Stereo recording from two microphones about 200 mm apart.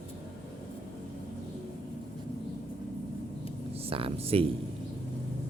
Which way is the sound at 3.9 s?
30° right (ahead or behind).